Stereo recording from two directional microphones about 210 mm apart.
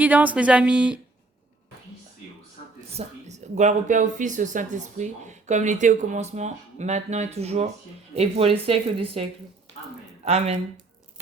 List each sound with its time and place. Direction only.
0.0 s a woman's voice: 5° right (ahead or behind)
2.9 s speech: 30° right (ahead or behind)
10.2 s speech: 30° right (ahead or behind)